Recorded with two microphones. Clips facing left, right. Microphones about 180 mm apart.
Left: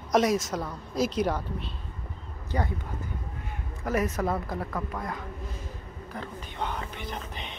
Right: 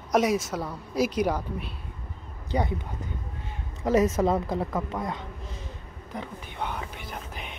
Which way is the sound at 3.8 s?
25° right (ahead or behind).